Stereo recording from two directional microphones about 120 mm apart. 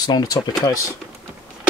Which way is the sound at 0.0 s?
30° left (ahead or behind).